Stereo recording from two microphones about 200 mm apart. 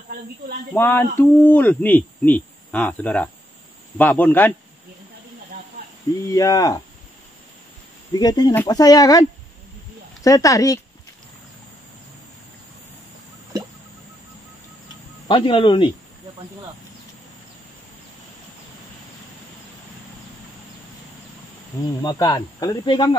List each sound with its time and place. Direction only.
0.7 s a man's voice: 10° left (ahead or behind)
6.2 s a man's voice: 15° left (ahead or behind)
8.1 s speech: 20° left (ahead or behind)
10.2 s a man's voice: 15° left (ahead or behind)
15.2 s speech: 25° left (ahead or behind)
22.0 s speech: 20° left (ahead or behind)